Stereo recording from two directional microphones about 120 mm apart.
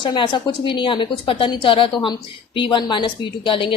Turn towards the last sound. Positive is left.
turn(degrees=45)  # may be behind; listen again after turning